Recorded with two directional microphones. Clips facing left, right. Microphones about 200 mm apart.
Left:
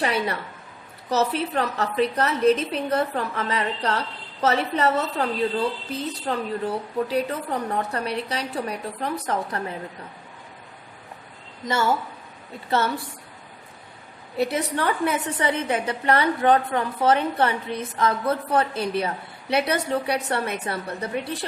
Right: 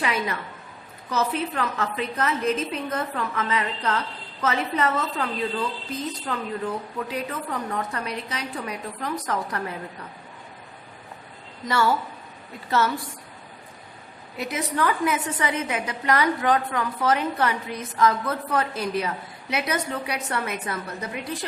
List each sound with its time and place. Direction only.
0.0 s a woman's voice: 35° left (ahead or behind)
1.4 s a woman's voice: 35° left (ahead or behind)
11.6 s a woman's voice: 25° left (ahead or behind)
14.3 s a woman's voice: 30° left (ahead or behind)